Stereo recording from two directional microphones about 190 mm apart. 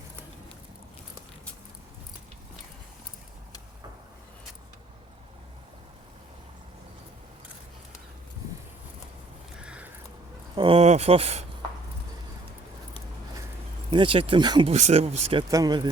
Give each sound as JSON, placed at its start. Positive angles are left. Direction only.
{"t": 9.6, "sound": "a sound", "side_deg": -5}
{"t": 10.5, "sound": "speech", "side_deg": -25}
{"t": 13.9, "sound": "speech", "side_deg": -25}
{"t": 14.7, "sound": "speech", "side_deg": -35}
{"t": 15.4, "sound": "speech", "side_deg": -20}